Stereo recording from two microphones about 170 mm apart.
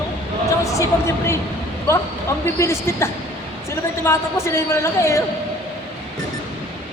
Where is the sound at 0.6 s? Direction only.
20° left (ahead or behind).